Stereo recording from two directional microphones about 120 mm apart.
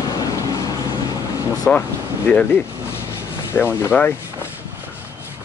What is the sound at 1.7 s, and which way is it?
Speech, 10° left (ahead or behind).